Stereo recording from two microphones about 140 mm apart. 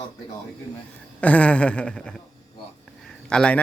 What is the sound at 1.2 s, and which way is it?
Speech, 10° left (ahead or behind).